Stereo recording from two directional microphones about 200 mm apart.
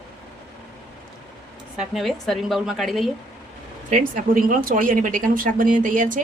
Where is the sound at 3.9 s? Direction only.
40° right (ahead or behind).